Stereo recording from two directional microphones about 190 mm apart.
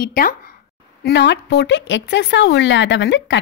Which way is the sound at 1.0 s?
65° left (ahead or behind).